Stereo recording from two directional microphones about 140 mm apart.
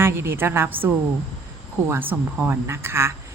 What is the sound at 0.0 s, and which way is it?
Speech, 15° right (ahead or behind).